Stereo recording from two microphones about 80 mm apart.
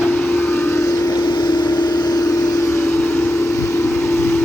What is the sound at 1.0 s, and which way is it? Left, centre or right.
Vehicle, left.